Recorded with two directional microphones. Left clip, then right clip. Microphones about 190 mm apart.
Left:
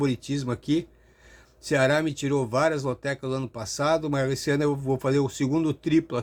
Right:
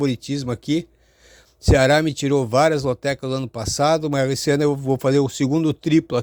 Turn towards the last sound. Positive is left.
turn(degrees=-40)  # may be behind; listen again after turning